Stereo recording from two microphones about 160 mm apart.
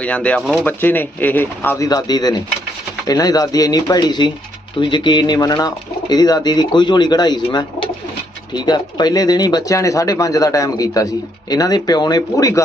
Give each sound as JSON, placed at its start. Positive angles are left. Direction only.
{"t": 0.0, "sound": "speech", "side_deg": 10}